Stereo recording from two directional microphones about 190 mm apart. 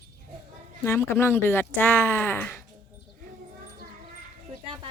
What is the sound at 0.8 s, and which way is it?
Speech, 10° left (ahead or behind).